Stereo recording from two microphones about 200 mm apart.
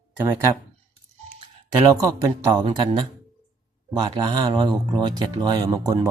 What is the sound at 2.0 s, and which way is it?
Speech, 15° right (ahead or behind).